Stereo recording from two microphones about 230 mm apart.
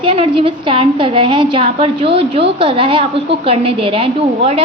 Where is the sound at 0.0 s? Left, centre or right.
Right.